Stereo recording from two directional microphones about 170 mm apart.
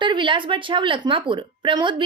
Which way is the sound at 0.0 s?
30° right (ahead or behind).